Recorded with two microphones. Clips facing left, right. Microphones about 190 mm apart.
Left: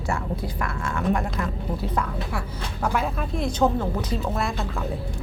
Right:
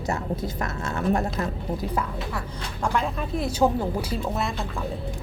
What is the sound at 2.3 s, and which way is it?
Speech, 5° left (ahead or behind).